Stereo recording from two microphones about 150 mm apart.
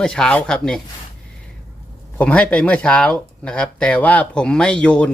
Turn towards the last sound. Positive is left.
turn(degrees=5)  # may be behind; listen again after turning